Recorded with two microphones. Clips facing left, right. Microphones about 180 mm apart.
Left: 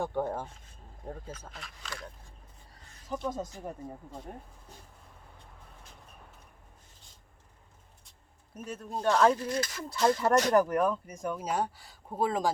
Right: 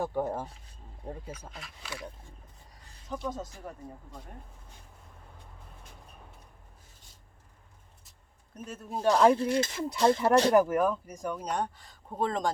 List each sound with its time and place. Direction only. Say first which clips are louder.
0.0 s speech: right 1 dB; 5° right (ahead or behind)
3.1 s speech: left 1 dB; 10° left (ahead or behind)
8.5 s speech: even; centre (ahead or behind); by 9.3 s 15° right (ahead or behind)
9.3 s speech: right 5 dB; 30° right (ahead or behind)
10.5 s speech: right 1 dB; 5° right (ahead or behind)